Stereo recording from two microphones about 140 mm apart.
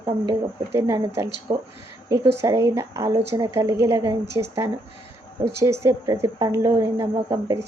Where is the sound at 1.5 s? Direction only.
35° right (ahead or behind).